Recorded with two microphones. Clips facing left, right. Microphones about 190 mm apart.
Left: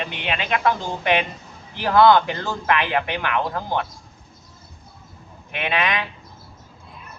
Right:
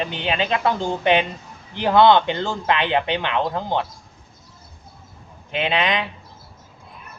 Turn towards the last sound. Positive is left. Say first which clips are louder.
# right 2 dB
turn(degrees=-25)  # may be behind; listen again after turning